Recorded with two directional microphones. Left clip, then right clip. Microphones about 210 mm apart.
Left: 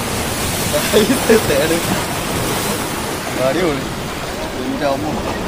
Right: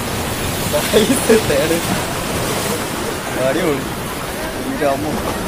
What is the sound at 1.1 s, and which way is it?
Speech, 35° left (ahead or behind).